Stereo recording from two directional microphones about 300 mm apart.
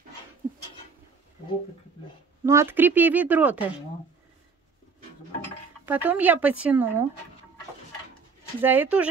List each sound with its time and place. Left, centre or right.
2.4 s speech: centre
5.9 s speech: centre
8.5 s speech: centre